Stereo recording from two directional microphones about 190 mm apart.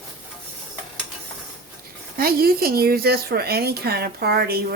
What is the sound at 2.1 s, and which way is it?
Speech, 50° right (ahead or behind).